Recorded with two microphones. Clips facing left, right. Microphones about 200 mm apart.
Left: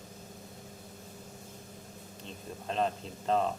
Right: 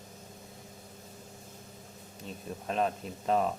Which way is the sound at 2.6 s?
5° right (ahead or behind).